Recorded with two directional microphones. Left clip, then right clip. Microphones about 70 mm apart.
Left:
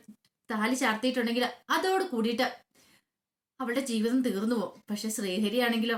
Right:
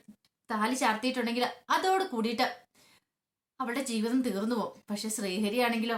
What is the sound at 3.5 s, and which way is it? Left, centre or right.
Speech, right.